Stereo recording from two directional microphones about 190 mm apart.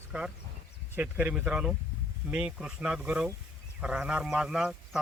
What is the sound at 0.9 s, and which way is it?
A man's voice, 10° right (ahead or behind).